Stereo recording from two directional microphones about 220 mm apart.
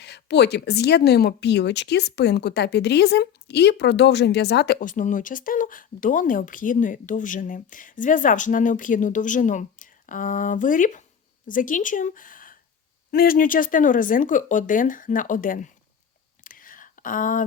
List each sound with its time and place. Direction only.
0.0 s speech: 50° left (ahead or behind)
16.4 s whispering: 40° left (ahead or behind)